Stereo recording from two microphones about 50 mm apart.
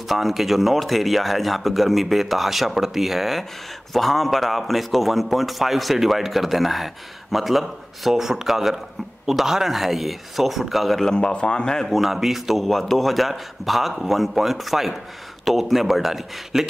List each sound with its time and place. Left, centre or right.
0.1 s a man's voice: centre
11.1 s speech: centre
11.9 s a man's voice: centre